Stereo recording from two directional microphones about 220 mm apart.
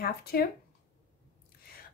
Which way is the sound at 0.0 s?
45° left (ahead or behind).